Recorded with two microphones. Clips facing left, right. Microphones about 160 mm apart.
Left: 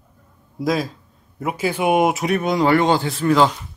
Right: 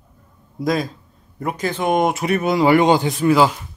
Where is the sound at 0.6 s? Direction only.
Centre (ahead or behind).